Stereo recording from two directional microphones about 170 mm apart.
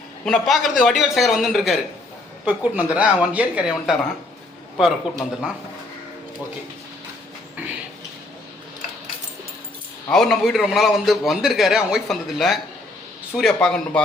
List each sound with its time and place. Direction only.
0.3 s a man's voice: centre (ahead or behind)
10.1 s a man's voice: 5° left (ahead or behind)